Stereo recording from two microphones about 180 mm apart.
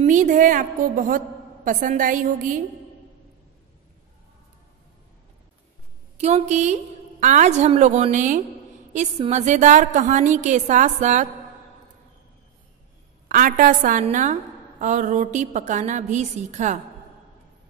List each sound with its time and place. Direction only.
0.0 s a woman's voice: 45° right (ahead or behind)
6.1 s a woman's voice: 40° right (ahead or behind)
13.3 s a woman's voice: 50° right (ahead or behind)